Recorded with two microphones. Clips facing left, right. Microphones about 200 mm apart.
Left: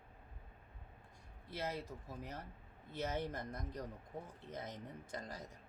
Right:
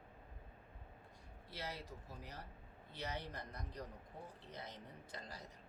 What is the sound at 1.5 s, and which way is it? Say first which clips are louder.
A man's voice: left 6 dB; 50° left (ahead or behind).